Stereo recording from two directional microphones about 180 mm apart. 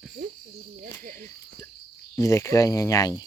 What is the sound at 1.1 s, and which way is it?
Cricket, 15° left (ahead or behind).